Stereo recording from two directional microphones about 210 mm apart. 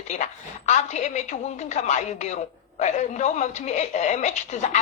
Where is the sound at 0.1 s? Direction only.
35° left (ahead or behind).